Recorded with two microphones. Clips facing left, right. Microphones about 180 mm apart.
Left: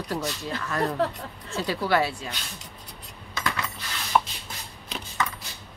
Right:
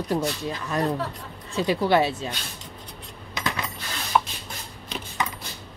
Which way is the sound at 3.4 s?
20° right (ahead or behind).